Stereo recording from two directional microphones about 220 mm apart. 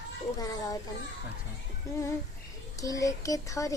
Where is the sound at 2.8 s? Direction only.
15° left (ahead or behind).